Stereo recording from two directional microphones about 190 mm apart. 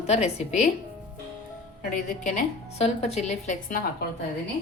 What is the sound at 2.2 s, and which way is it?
A woman's voice, 35° left (ahead or behind).